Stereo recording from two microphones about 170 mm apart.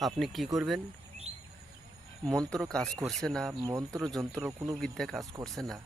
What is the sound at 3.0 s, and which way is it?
Speech, centre (ahead or behind).